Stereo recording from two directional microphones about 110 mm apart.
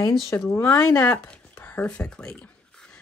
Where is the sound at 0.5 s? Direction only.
20° left (ahead or behind).